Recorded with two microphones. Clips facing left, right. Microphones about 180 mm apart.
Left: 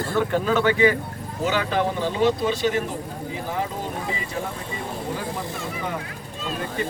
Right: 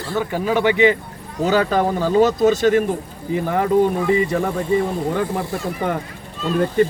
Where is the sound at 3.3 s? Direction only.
60° right (ahead or behind).